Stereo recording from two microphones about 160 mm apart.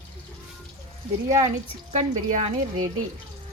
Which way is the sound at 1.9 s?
45° right (ahead or behind).